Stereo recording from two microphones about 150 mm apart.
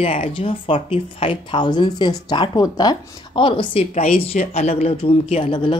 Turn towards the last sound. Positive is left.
turn(degrees=35)  # may be behind; listen again after turning